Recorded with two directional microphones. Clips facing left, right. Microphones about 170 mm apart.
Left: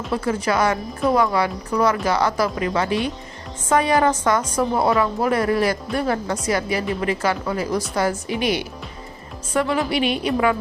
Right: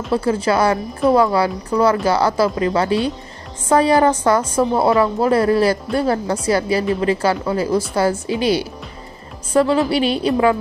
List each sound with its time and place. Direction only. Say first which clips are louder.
0.1 s speech: right 4 dB; 30° right (ahead or behind)